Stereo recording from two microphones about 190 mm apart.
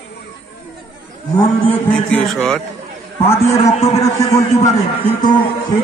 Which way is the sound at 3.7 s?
30° left (ahead or behind).